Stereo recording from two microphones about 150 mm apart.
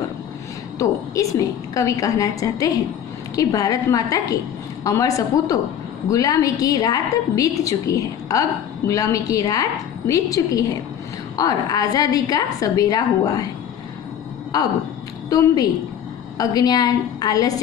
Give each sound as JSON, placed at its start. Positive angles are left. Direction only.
{"t": 0.7, "sound": "a woman's voice", "side_deg": 20}
{"t": 14.5, "sound": "a woman's voice", "side_deg": 25}